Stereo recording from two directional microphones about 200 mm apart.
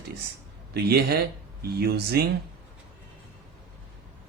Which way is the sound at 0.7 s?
55° right (ahead or behind).